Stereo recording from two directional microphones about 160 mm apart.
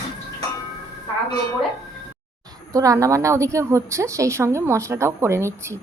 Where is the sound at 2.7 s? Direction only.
20° right (ahead or behind).